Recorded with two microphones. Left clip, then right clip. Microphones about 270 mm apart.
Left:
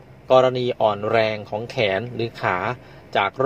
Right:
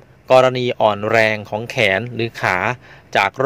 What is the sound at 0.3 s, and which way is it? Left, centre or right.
Speech, right.